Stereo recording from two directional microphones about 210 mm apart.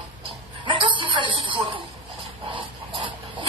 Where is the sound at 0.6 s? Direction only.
25° right (ahead or behind).